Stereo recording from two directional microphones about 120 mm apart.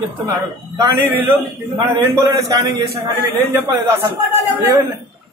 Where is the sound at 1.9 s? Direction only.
30° right (ahead or behind).